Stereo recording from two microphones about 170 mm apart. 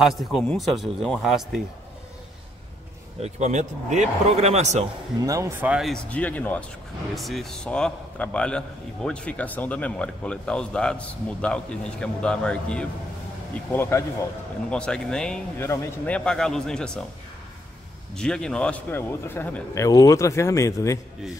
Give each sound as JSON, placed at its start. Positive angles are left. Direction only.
{"t": 0.0, "sound": "a man's voice", "side_deg": 0}
{"t": 3.2, "sound": "speech", "side_deg": -40}
{"t": 5.2, "sound": "speech", "side_deg": -20}
{"t": 6.0, "sound": "a man's voice", "side_deg": 10}
{"t": 16.3, "sound": "a man's voice", "side_deg": 5}
{"t": 18.1, "sound": "a man's voice", "side_deg": 5}